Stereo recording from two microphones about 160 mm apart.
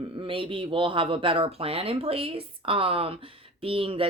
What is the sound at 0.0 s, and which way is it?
Speech, 35° right (ahead or behind).